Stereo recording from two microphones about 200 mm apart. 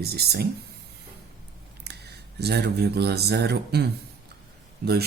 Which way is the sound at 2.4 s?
55° right (ahead or behind).